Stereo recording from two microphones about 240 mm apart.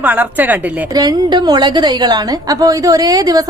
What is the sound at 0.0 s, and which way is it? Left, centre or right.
A woman's voice, centre.